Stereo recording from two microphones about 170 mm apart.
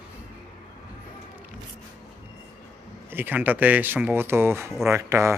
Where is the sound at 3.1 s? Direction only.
10° right (ahead or behind).